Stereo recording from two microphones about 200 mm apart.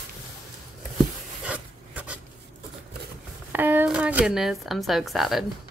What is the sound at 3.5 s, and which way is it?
Speech, 10° right (ahead or behind).